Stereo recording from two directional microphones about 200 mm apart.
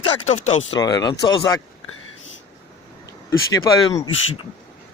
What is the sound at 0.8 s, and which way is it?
Speech, 15° left (ahead or behind).